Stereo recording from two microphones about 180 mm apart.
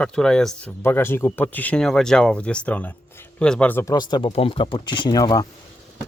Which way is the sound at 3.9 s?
25° left (ahead or behind).